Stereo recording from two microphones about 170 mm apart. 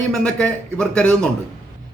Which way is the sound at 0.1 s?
5° left (ahead or behind).